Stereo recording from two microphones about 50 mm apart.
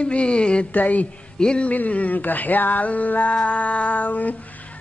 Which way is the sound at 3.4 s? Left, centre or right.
Left.